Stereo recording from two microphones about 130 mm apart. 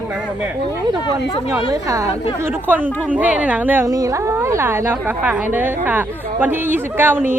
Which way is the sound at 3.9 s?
25° right (ahead or behind).